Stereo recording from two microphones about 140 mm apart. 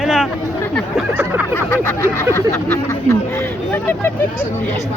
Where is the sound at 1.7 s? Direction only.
15° left (ahead or behind).